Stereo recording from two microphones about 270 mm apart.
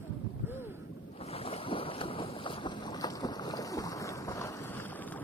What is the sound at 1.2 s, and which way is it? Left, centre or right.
Boat, left.